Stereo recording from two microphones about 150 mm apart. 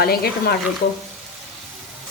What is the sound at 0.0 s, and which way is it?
Speech, 90° left.